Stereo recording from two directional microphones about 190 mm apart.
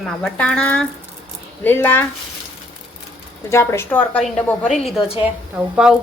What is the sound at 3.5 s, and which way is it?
A woman's voice, 15° left (ahead or behind).